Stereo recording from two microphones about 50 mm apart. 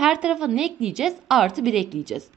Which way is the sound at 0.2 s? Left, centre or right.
Centre.